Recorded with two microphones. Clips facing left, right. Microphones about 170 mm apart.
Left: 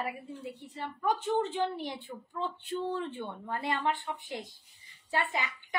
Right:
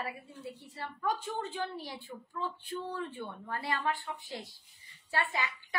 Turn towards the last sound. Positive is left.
turn(degrees=20)  # may be behind; listen again after turning